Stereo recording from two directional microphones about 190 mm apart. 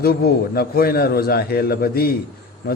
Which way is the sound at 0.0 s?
55° left (ahead or behind).